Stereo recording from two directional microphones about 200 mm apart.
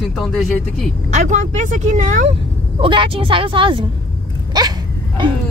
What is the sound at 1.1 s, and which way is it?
Speech, 35° right (ahead or behind).